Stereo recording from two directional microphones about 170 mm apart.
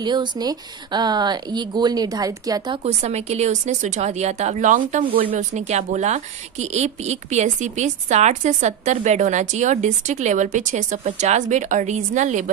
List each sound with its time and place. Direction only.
0.0 s speech: 25° right (ahead or behind)
2.8 s a woman's voice: 40° right (ahead or behind)